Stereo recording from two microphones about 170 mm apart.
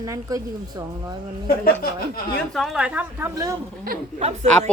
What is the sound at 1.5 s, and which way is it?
Speech, 60° left (ahead or behind).